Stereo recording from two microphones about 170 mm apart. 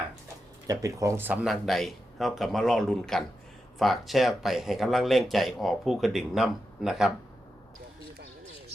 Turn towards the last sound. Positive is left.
turn(degrees=-5)  # may be behind; listen again after turning